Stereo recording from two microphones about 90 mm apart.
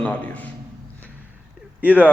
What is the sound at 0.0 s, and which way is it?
Speech, 15° left (ahead or behind).